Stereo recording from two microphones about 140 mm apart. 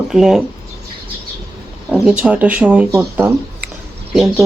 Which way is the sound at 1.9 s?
5° right (ahead or behind).